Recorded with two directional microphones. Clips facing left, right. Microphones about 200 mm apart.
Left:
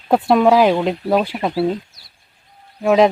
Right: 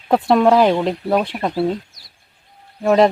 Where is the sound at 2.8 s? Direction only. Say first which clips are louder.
Even; centre (ahead or behind).